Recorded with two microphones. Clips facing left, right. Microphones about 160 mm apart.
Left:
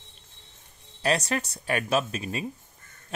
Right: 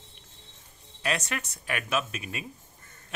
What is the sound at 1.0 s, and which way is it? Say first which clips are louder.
Speech: left 5 dB; 35° left (ahead or behind).